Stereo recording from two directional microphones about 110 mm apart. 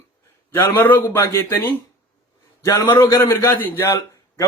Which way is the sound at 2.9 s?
25° left (ahead or behind).